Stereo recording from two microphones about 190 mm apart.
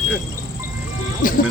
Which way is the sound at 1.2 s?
45° left (ahead or behind).